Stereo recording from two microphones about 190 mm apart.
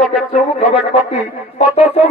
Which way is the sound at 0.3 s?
35° left (ahead or behind).